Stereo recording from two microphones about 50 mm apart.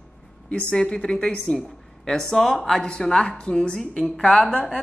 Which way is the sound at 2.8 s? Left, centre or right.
Centre.